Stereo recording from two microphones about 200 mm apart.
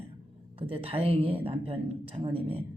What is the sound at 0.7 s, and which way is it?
Speech, 30° right (ahead or behind).